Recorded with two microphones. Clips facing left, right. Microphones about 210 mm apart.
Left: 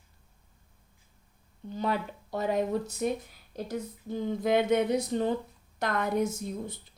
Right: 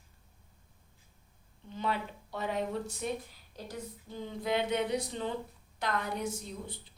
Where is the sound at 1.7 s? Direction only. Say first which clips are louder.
Left 4 dB; 40° left (ahead or behind).